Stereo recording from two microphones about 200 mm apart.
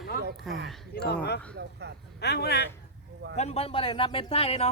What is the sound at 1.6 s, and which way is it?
Speech, 55° right (ahead or behind).